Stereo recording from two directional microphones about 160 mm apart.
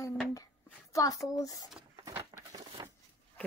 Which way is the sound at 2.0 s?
20° right (ahead or behind).